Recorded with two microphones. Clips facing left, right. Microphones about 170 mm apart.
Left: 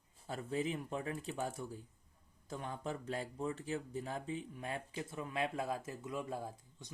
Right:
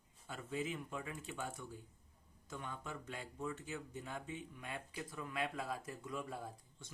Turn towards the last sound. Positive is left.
turn(degrees=20)  # may be behind; listen again after turning